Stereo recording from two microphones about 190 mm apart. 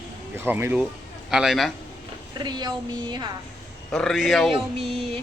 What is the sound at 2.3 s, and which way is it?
Speech, 20° right (ahead or behind).